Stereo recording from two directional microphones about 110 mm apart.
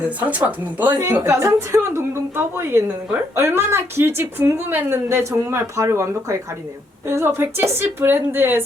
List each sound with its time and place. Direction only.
0.2 s speech: 15° right (ahead or behind)
1.1 s a woman's voice: 25° right (ahead or behind)